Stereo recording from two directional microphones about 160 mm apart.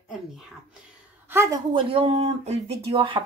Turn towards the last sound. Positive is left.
turn(degrees=-30)  # may be behind; listen again after turning